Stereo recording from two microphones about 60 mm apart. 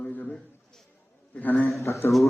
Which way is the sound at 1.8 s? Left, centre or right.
Left.